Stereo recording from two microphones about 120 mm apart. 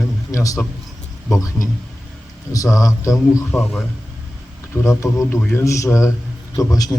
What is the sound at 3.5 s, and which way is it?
Speech, centre (ahead or behind).